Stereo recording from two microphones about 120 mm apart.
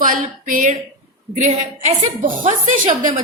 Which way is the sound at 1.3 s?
75° right (ahead or behind).